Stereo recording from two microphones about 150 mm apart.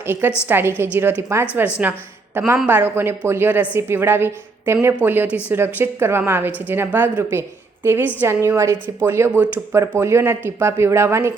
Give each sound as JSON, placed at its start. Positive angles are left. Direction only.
{"t": 0.0, "sound": "a woman's voice", "side_deg": -15}